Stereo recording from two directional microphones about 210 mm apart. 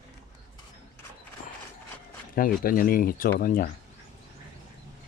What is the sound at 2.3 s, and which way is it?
Speech, 40° left (ahead or behind).